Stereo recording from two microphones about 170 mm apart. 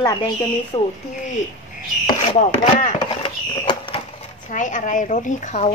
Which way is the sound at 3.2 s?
30° left (ahead or behind).